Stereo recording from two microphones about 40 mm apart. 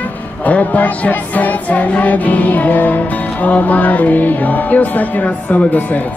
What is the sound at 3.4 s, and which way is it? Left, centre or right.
Speech, left.